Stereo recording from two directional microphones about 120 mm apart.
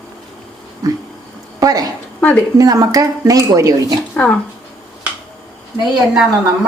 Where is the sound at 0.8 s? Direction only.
30° right (ahead or behind).